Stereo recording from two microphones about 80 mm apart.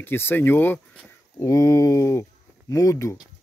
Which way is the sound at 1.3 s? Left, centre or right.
Left.